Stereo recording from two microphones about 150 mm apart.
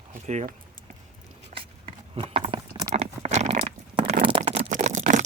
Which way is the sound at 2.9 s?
45° right (ahead or behind).